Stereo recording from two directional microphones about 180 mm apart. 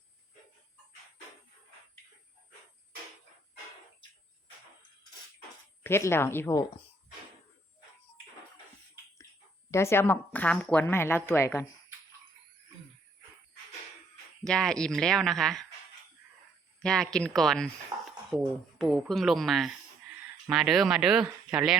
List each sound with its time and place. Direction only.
5.8 s a woman's voice: 15° left (ahead or behind)
9.7 s a woman's voice: 15° left (ahead or behind)
14.4 s speech: 5° left (ahead or behind)
16.8 s speech: 5° left (ahead or behind)
17.9 s a sound: 25° right (ahead or behind)
18.8 s speech: centre (ahead or behind)